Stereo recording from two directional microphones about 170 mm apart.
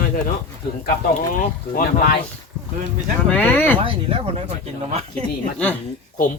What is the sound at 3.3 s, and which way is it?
Speech, 10° left (ahead or behind).